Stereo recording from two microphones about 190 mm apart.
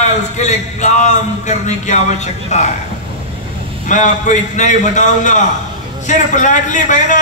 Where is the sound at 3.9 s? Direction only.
40° left (ahead or behind).